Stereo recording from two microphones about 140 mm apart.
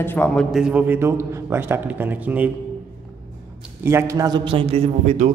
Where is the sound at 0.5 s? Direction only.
5° right (ahead or behind).